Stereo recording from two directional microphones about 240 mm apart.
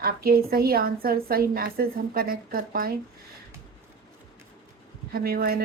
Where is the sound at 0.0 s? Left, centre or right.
Right.